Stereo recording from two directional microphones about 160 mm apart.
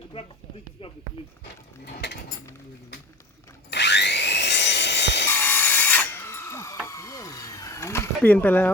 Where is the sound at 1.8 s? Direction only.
90° left.